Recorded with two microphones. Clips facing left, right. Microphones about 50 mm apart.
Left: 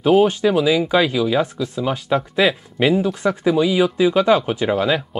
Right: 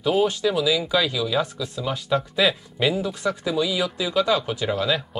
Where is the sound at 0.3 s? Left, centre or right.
Left.